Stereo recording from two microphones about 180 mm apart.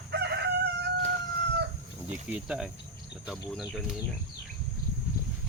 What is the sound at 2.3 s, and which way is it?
Speech, 5° right (ahead or behind).